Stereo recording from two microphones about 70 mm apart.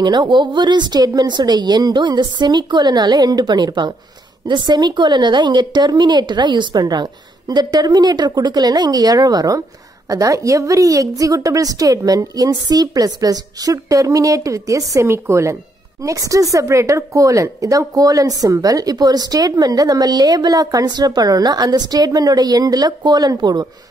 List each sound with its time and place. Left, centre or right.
0.0 s a woman's voice: right
16.0 s speech: right
23.4 s a woman's voice: right